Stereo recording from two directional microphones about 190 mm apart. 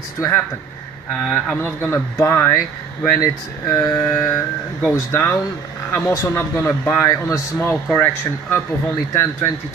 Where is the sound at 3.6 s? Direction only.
15° left (ahead or behind).